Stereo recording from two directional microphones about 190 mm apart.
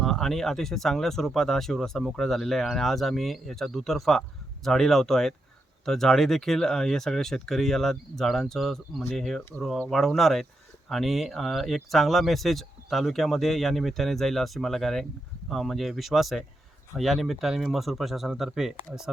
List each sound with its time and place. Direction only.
0.0 s speech: centre (ahead or behind)